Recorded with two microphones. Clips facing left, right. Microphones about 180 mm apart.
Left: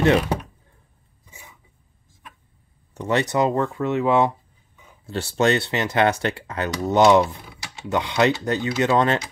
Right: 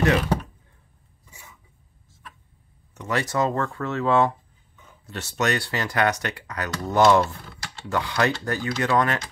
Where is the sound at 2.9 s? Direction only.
25° left (ahead or behind).